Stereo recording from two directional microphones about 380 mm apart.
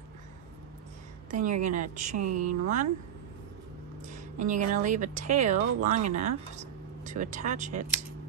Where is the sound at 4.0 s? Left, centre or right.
Centre.